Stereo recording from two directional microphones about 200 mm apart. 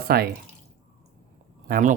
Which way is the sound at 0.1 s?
50° right (ahead or behind).